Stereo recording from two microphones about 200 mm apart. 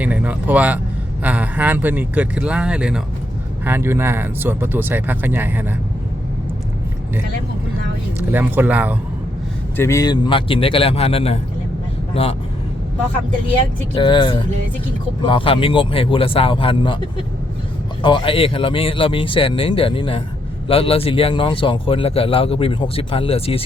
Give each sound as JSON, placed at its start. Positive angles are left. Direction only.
{"t": 0.0, "sound": "speech", "side_deg": -5}
{"t": 8.3, "sound": "speech", "side_deg": -10}
{"t": 9.7, "sound": "a man's voice", "side_deg": 15}
{"t": 13.9, "sound": "a man's voice", "side_deg": 25}
{"t": 18.0, "sound": "a man's voice", "side_deg": 25}